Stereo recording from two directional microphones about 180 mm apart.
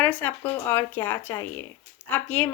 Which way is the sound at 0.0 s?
10° left (ahead or behind).